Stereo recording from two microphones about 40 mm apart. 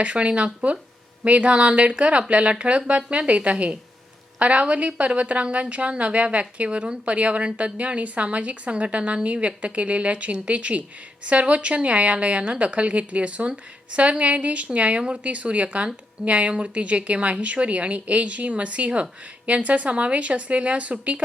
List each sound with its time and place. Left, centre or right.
0.0 s a woman's voice: right